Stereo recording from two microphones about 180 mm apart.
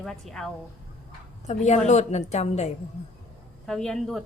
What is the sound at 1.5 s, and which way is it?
A woman's voice, 40° left (ahead or behind).